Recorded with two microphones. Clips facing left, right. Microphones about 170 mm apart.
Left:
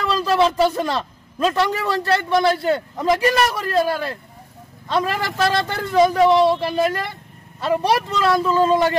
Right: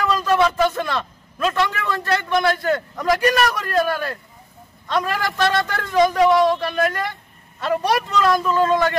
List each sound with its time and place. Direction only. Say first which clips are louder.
0.1 s a man's voice: left 2 dB; 30° left (ahead or behind)